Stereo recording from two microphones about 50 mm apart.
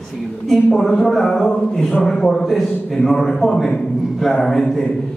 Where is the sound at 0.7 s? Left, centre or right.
Centre.